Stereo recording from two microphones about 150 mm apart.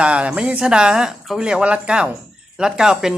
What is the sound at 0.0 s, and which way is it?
Speech, 5° right (ahead or behind).